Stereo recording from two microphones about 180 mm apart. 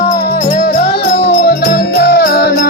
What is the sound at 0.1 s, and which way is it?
Music, 50° left (ahead or behind).